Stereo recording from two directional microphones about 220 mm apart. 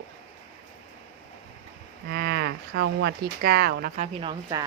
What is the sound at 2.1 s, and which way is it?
Speech, 45° right (ahead or behind).